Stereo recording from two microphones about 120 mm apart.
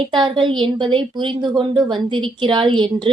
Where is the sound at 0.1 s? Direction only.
40° right (ahead or behind).